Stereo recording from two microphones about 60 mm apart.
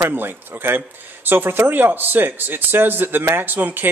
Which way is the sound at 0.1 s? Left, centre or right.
Right.